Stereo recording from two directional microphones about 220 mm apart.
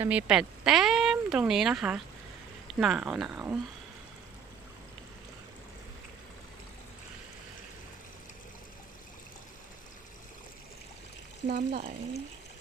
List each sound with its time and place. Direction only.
0.0 s speech: 5° right (ahead or behind)
11.4 s speech: 40° right (ahead or behind)